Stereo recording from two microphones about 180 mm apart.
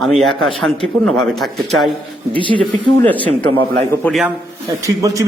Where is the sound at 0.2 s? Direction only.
Centre (ahead or behind).